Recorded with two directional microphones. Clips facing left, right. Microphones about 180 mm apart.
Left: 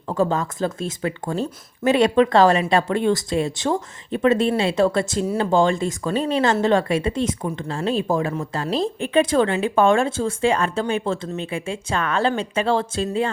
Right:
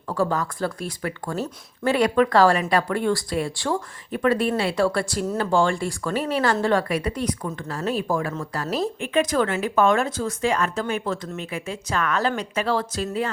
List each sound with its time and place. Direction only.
0.1 s speech: 20° left (ahead or behind)